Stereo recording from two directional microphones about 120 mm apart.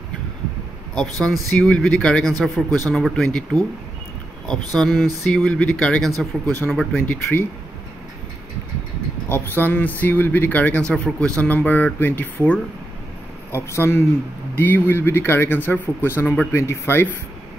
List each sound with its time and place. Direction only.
1.2 s speech: 5° left (ahead or behind)
4.5 s speech: 5° left (ahead or behind)
7.0 s speech: 15° left (ahead or behind)
9.3 s speech: 15° left (ahead or behind)